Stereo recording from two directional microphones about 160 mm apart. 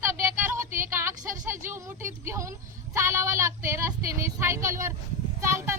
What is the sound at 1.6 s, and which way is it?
A woman's voice, 15° right (ahead or behind).